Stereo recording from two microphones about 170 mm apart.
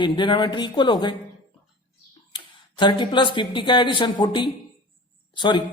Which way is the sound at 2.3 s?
25° left (ahead or behind).